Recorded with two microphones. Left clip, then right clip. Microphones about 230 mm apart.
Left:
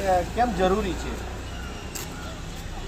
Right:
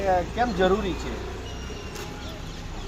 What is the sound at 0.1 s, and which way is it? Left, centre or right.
Speech, centre.